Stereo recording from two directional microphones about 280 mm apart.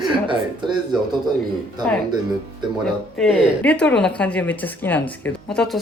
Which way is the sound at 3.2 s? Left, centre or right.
Centre.